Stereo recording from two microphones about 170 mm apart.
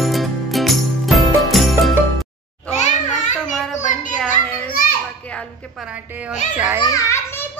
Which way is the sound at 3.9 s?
50° left (ahead or behind).